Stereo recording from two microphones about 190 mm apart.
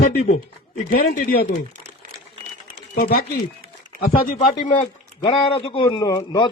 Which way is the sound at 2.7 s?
50° left (ahead or behind).